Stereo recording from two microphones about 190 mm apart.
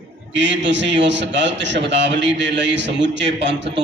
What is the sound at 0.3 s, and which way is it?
A man's voice, 70° right (ahead or behind).